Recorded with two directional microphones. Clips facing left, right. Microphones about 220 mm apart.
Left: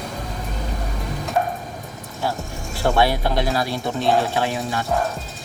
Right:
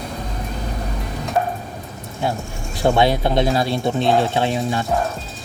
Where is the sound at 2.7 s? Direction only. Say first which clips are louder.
Right 3 dB; 20° right (ahead or behind).